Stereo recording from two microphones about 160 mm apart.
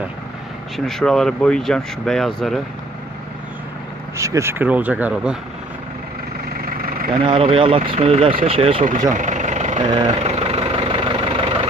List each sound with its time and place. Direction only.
0.7 s speech: centre (ahead or behind)
4.2 s speech: 20° right (ahead or behind)
7.1 s speech: 35° right (ahead or behind)
9.1 s engine: 50° right (ahead or behind)
10.0 s vehicle: 40° right (ahead or behind)